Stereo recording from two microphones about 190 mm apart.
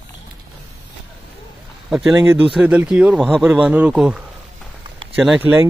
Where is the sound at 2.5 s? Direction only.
5° right (ahead or behind).